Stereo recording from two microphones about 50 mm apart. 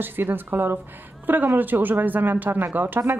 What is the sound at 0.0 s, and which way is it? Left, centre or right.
A woman's voice, right.